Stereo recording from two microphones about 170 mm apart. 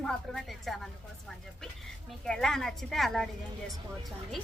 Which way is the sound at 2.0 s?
Centre (ahead or behind).